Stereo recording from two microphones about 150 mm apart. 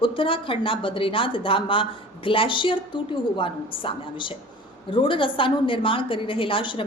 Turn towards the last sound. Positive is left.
turn(degrees=35)  # may be behind; listen again after turning